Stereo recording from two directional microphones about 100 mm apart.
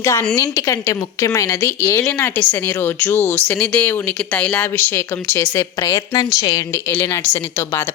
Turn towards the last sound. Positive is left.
turn(degrees=25)  # may be behind; listen again after turning